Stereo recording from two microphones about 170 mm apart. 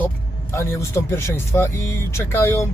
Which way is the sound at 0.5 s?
15° left (ahead or behind).